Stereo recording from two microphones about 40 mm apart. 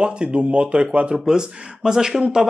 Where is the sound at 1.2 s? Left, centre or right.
Centre.